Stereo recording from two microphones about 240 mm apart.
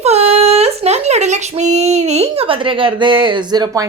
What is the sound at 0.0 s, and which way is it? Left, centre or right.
Speech, right.